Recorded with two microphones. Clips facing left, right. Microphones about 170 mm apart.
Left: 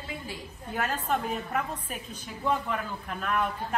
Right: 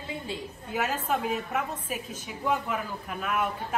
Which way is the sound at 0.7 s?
5° right (ahead or behind).